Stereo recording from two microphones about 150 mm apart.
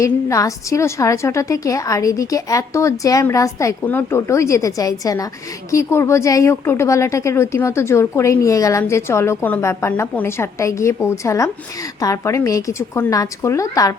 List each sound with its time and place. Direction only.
0.0 s a woman's voice: 20° left (ahead or behind)